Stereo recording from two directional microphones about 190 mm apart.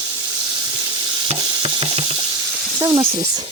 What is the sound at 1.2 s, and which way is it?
Stir, 30° right (ahead or behind).